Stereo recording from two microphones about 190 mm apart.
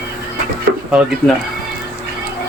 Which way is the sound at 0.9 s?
5° right (ahead or behind).